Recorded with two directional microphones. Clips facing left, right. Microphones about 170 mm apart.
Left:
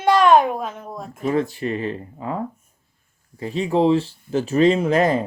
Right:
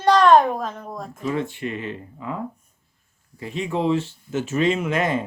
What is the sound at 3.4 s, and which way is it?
Speech, 35° left (ahead or behind).